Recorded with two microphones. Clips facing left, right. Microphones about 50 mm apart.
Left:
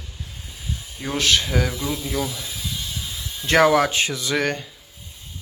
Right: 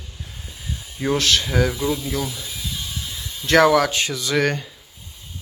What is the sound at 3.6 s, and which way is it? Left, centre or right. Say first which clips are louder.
Speech: right 1 dB; left.